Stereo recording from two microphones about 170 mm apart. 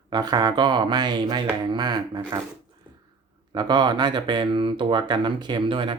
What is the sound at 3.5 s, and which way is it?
Speech, 25° right (ahead or behind).